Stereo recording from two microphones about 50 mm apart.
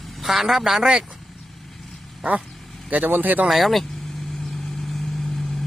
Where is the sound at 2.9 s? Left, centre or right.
Right.